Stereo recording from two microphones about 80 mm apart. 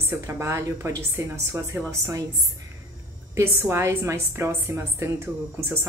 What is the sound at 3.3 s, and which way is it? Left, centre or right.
Speech, right.